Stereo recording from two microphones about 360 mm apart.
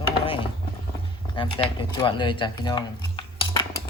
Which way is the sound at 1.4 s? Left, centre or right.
Centre.